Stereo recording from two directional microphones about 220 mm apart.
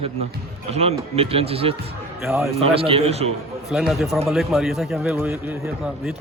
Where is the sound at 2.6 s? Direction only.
25° right (ahead or behind).